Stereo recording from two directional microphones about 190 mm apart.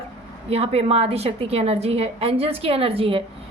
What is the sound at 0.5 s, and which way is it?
A woman's voice, 30° right (ahead or behind).